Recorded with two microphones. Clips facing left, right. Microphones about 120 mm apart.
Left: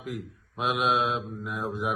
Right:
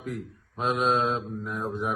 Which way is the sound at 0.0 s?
5° left (ahead or behind).